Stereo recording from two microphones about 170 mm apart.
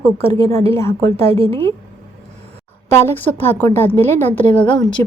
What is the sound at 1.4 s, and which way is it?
Speech, 35° right (ahead or behind).